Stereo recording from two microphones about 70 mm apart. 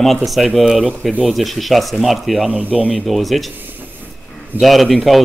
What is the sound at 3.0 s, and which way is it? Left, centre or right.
Speech, centre.